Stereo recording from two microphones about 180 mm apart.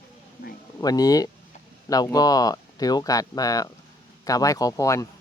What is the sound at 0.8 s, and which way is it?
Speech, 20° left (ahead or behind).